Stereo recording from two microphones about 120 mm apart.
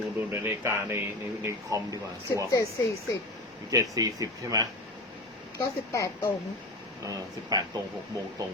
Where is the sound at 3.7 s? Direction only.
30° right (ahead or behind).